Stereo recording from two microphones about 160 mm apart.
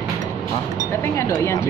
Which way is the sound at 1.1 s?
15° left (ahead or behind).